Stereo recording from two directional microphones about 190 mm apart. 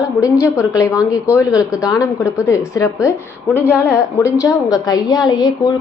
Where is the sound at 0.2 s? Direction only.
15° left (ahead or behind).